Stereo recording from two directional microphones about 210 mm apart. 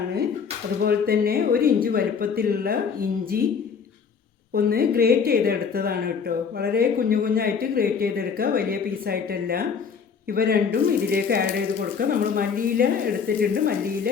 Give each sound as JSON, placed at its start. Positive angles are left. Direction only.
{"t": 0.8, "sound": "speech", "side_deg": -45}
{"t": 4.5, "sound": "speech", "side_deg": -45}